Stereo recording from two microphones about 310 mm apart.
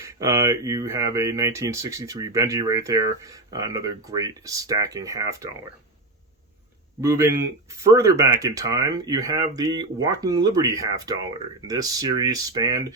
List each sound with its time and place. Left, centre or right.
0.0 s speech: centre
7.0 s speech: centre